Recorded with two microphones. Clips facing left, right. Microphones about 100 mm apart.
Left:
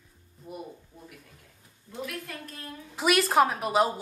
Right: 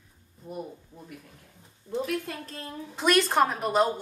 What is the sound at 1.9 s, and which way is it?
Speech, 30° right (ahead or behind).